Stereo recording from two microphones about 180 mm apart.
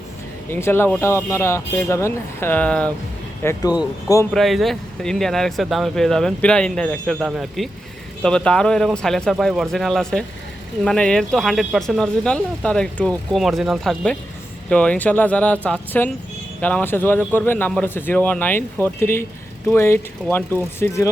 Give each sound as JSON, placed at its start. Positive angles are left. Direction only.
{"t": 0.5, "sound": "speech", "side_deg": 15}
{"t": 3.4, "sound": "speech", "side_deg": 20}
{"t": 4.4, "sound": "speech", "side_deg": 0}